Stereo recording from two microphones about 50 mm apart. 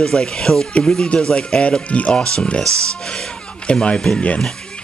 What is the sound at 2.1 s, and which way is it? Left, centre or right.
Speech, centre.